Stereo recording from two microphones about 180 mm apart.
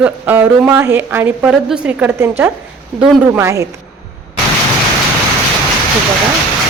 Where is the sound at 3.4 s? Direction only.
15° right (ahead or behind).